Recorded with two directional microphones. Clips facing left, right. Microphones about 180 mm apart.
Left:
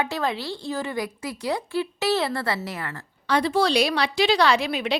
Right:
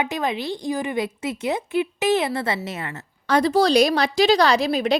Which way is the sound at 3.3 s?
40° right (ahead or behind).